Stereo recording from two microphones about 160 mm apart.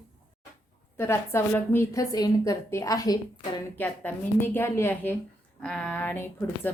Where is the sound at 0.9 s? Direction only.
15° left (ahead or behind).